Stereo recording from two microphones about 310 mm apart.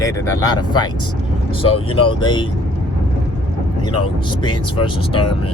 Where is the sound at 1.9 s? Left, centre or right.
Centre.